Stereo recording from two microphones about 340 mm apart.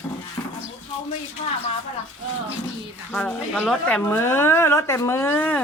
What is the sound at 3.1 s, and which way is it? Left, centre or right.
Speech, centre.